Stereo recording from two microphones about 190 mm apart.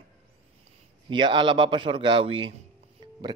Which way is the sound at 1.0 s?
25° right (ahead or behind).